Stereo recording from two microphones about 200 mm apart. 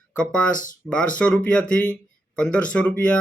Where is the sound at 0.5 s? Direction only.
40° left (ahead or behind).